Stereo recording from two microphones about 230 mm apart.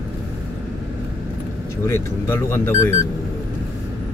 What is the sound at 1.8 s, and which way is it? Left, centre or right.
Speech, centre.